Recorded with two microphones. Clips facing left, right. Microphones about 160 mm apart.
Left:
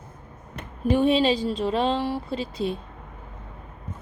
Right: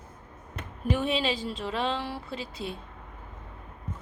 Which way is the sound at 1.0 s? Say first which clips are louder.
Left 8 dB; 40° left (ahead or behind).